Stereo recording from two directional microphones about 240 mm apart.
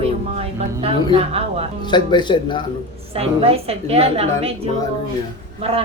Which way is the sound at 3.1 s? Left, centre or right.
Right.